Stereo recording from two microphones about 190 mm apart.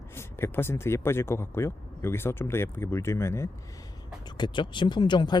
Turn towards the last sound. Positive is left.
turn(degrees=25)  # may be behind; listen again after turning